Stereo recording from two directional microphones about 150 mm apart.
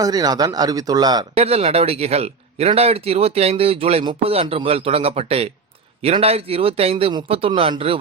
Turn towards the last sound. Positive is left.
turn(degrees=-40)  # may be behind; listen again after turning